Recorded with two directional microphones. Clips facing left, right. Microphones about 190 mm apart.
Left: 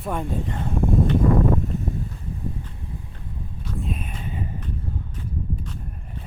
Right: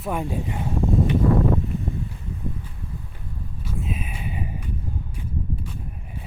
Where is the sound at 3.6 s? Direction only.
5° right (ahead or behind).